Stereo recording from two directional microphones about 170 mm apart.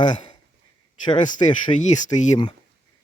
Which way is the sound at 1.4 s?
35° left (ahead or behind).